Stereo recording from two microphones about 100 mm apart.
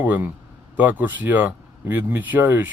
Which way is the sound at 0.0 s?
15° right (ahead or behind).